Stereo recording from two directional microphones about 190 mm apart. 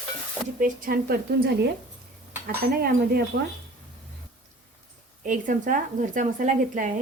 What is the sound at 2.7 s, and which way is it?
Speech, 55° right (ahead or behind).